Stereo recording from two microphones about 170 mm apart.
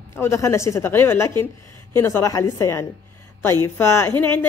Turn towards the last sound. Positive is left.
turn(degrees=10)  # may be behind; listen again after turning